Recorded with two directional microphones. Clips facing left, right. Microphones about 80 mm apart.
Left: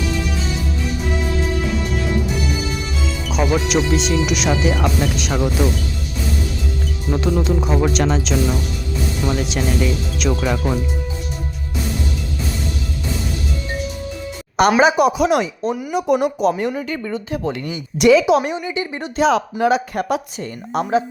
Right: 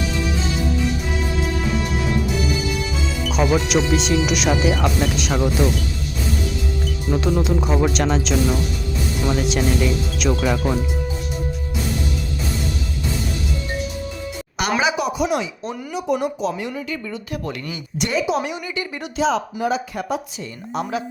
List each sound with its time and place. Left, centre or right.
3.2 s speech: centre
7.1 s speech: centre
14.8 s speech: left
15.0 s a woman's voice: left
15.9 s speech: left
16.2 s speech: left
17.3 s speech: left
18.0 s a woman's voice: left
18.5 s speech: left
19.1 s speech: left
20.7 s speech: left